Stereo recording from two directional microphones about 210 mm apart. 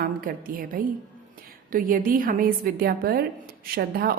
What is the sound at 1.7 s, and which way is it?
A woman's voice, 40° right (ahead or behind).